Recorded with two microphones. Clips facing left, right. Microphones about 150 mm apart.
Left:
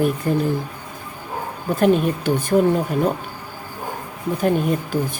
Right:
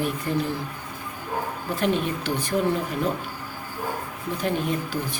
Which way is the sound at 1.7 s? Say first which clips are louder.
Left 8 dB; 45° left (ahead or behind).